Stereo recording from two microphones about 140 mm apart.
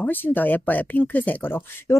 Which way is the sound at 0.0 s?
15° left (ahead or behind).